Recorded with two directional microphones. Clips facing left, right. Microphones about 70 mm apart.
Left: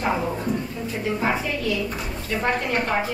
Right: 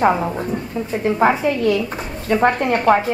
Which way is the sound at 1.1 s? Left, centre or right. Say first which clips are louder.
Right 9 dB; right.